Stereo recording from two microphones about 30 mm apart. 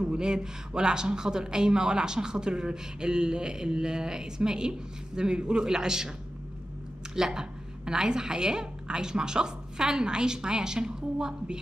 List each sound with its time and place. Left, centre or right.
0.0 s speech: right
7.2 s speech: right